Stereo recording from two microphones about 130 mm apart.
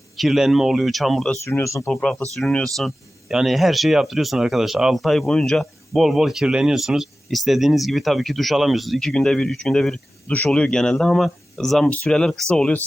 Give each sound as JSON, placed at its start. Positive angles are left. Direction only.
{"t": 0.2, "sound": "speech", "side_deg": 0}
{"t": 1.5, "sound": "speech", "side_deg": 20}
{"t": 1.9, "sound": "speech", "side_deg": 5}